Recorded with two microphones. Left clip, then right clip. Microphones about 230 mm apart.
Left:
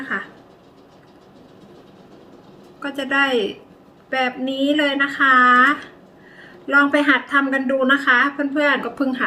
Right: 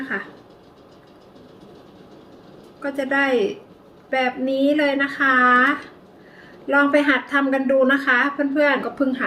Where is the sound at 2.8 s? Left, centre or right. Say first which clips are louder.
Left 1 dB; centre.